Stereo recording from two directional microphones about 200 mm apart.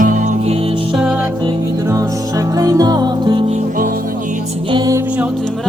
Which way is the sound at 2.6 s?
15° right (ahead or behind).